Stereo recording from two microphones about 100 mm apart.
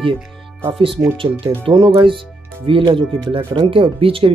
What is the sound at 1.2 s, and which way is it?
Speech, 65° right (ahead or behind).